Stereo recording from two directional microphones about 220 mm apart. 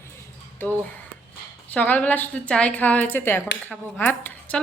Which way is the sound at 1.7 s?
10° left (ahead or behind).